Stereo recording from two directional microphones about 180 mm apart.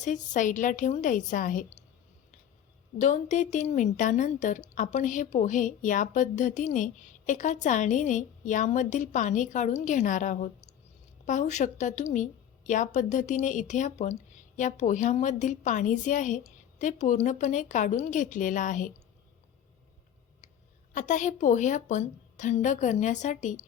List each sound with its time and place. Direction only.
0.0 s a woman's voice: 45° left (ahead or behind)
3.0 s a woman's voice: 45° left (ahead or behind)
20.9 s a woman's voice: 45° left (ahead or behind)